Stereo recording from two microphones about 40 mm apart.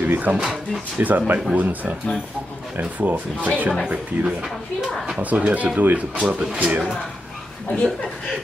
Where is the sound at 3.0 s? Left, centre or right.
Right.